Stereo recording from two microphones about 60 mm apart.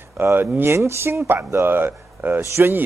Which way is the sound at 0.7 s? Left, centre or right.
Right.